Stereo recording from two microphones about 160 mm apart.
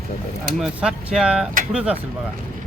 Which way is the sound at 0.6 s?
5° right (ahead or behind).